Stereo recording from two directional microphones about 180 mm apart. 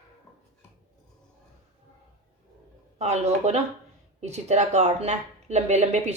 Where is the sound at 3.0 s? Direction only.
40° right (ahead or behind).